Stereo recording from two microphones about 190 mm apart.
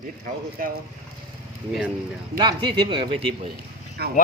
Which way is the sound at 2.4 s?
25° right (ahead or behind).